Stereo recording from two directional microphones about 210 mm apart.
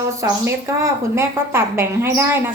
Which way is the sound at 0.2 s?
15° right (ahead or behind).